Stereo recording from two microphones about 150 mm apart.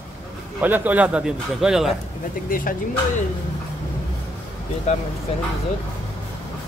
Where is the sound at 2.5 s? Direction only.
70° left (ahead or behind).